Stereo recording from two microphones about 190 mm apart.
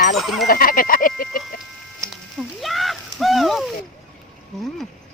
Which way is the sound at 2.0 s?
15° right (ahead or behind).